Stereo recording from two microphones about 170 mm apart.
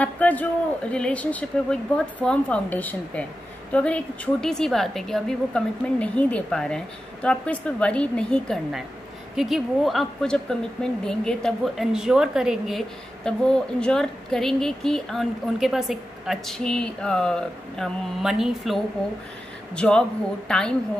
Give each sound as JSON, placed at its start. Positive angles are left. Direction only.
{"t": 0.0, "sound": "a man's voice", "side_deg": 10}